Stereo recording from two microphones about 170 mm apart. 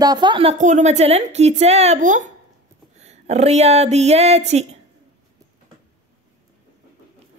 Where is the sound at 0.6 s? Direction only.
45° right (ahead or behind).